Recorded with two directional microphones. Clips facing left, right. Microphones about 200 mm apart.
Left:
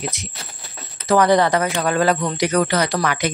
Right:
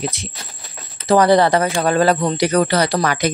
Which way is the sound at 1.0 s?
30° right (ahead or behind).